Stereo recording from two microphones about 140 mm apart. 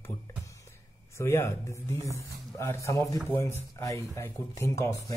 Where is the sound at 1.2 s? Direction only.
20° left (ahead or behind).